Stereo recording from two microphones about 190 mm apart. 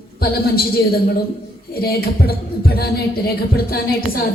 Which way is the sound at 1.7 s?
55° left (ahead or behind).